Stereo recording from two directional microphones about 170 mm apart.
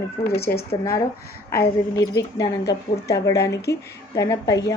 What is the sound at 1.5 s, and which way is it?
A woman's voice, 20° left (ahead or behind).